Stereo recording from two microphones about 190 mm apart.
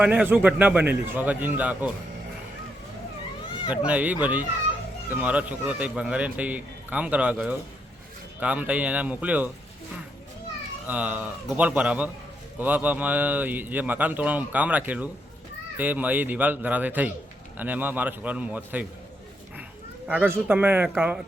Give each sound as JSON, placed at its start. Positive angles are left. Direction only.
{"t": 0.0, "sound": "speech", "side_deg": -10}
{"t": 3.7, "sound": "speech", "side_deg": -10}
{"t": 10.8, "sound": "speech", "side_deg": -5}
{"t": 20.1, "sound": "speech", "side_deg": -10}